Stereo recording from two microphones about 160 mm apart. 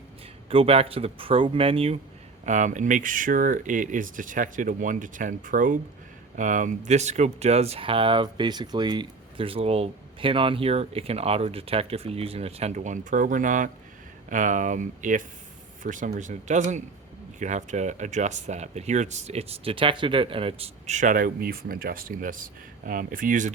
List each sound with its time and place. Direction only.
0.5 s speech: 35° right (ahead or behind)
2.4 s speech: 50° right (ahead or behind)